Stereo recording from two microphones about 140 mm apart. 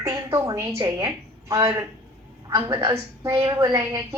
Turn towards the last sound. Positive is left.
turn(degrees=-25)  # may be behind; listen again after turning